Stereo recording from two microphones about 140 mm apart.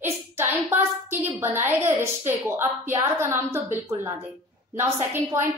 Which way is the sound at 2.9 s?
15° right (ahead or behind).